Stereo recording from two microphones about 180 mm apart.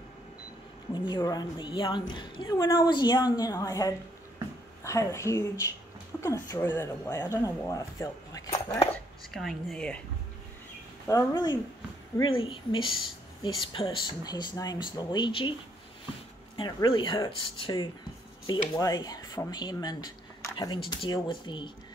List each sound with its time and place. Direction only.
0.9 s a woman's voice: 25° left (ahead or behind)
8.9 s speech: centre (ahead or behind)
11.1 s a woman's voice: 20° left (ahead or behind)
12.2 s a woman's voice: 30° left (ahead or behind)
16.5 s a woman's voice: 25° left (ahead or behind)